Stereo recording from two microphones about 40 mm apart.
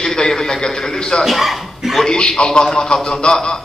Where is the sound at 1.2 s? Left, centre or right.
Centre.